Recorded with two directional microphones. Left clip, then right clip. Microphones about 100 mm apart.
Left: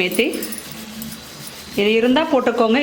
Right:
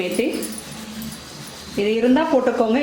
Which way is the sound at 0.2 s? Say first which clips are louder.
Left 3 dB; 35° left (ahead or behind).